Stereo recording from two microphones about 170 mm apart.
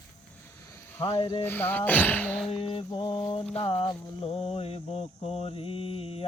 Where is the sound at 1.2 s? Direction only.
30° left (ahead or behind).